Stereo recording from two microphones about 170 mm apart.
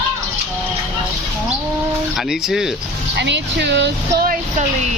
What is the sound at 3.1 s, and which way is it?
Speech, 90° right.